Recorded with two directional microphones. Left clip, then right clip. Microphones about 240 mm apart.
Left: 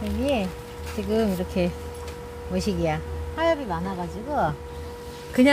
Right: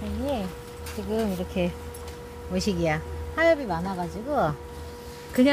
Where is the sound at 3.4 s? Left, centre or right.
Right.